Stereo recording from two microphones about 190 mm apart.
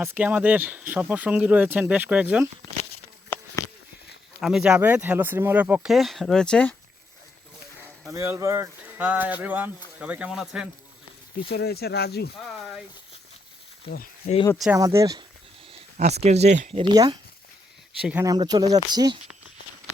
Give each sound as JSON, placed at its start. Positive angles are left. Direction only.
{"t": 0.0, "sound": "speech", "side_deg": -10}
{"t": 3.3, "sound": "a sound", "side_deg": 10}
{"t": 4.4, "sound": "speech", "side_deg": 0}
{"t": 7.8, "sound": "a sound", "side_deg": 5}
{"t": 8.1, "sound": "speech", "side_deg": -15}
{"t": 11.5, "sound": "speech", "side_deg": 55}
{"t": 13.8, "sound": "speech", "side_deg": 55}
{"t": 14.8, "sound": "speech", "side_deg": -20}
{"t": 16.0, "sound": "speech", "side_deg": -35}
{"t": 16.8, "sound": "speech", "side_deg": -20}